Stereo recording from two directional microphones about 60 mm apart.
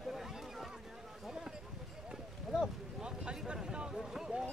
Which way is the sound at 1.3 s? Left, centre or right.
Centre.